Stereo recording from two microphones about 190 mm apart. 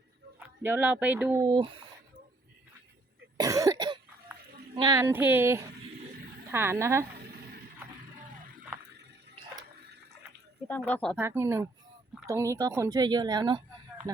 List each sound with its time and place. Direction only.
0.3 s speech: 10° right (ahead or behind)
3.3 s cough: 20° right (ahead or behind)
4.7 s speech: 20° right (ahead or behind)
10.7 s speech: 10° left (ahead or behind)
11.2 s a woman's voice: 10° right (ahead or behind)